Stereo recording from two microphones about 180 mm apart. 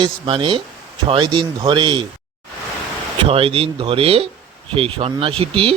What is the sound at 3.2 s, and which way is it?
Speech, 30° right (ahead or behind).